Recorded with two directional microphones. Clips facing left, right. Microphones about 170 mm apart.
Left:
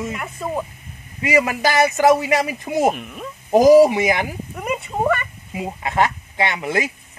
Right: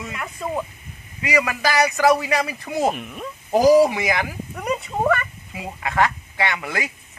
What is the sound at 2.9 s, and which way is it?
Speech, centre (ahead or behind).